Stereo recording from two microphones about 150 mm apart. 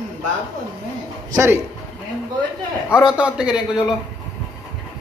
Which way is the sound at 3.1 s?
5° right (ahead or behind).